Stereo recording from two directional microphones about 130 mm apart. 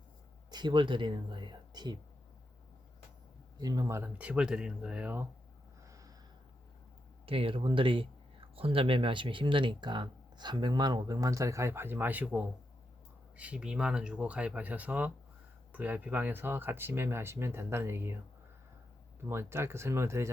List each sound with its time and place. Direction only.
0.5 s speech: 35° right (ahead or behind)
3.6 s speech: 25° right (ahead or behind)
4.2 s speech: 10° right (ahead or behind)
5.8 s snort: 25° right (ahead or behind)
7.3 s speech: 45° right (ahead or behind); by 18.2 s 20° right (ahead or behind)
19.3 s speech: 20° right (ahead or behind)